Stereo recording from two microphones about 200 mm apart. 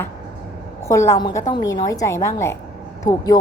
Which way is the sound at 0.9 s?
15° left (ahead or behind).